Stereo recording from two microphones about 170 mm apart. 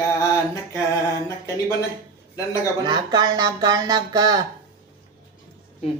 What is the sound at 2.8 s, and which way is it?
Speech, 25° right (ahead or behind).